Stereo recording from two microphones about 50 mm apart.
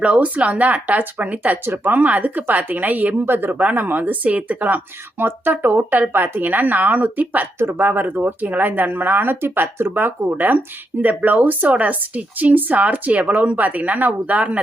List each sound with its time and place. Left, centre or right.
0.0 s speech: right
1.6 s speech: right
3.5 s speech: right
5.2 s speech: right